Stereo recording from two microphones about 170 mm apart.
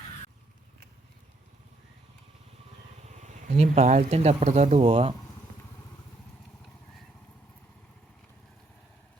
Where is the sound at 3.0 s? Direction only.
45° right (ahead or behind).